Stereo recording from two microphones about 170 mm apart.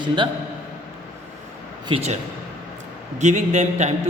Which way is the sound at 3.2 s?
45° right (ahead or behind).